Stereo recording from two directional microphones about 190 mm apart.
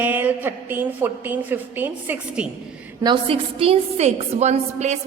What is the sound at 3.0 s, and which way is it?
A woman's voice, 25° right (ahead or behind).